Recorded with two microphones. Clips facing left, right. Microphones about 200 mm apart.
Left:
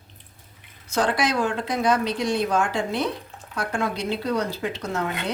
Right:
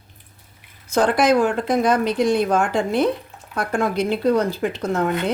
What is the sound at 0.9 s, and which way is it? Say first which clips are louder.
Speech: right 6 dB; 50° right (ahead or behind).